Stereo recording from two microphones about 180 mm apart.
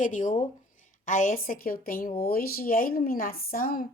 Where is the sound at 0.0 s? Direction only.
45° left (ahead or behind).